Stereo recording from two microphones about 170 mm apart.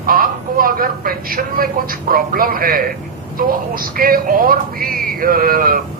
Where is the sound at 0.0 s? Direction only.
55° right (ahead or behind).